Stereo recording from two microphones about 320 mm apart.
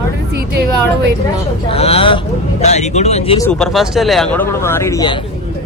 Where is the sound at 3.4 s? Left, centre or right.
Centre.